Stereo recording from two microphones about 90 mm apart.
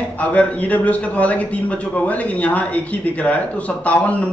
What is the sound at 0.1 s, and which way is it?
Speech, 15° left (ahead or behind).